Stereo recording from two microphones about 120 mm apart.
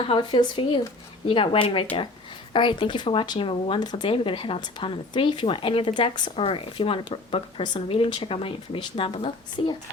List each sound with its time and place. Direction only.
0.0 s speech: 45° left (ahead or behind)